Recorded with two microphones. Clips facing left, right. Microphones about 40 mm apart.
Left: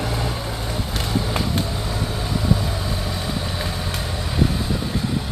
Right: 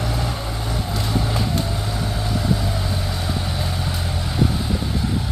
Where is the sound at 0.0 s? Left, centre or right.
Centre.